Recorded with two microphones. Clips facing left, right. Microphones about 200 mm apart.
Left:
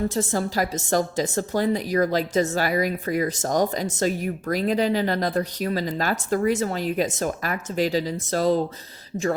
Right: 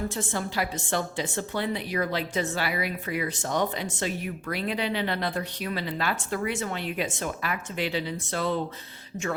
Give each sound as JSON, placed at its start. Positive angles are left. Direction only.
{"t": 0.1, "sound": "a woman's voice", "side_deg": 40}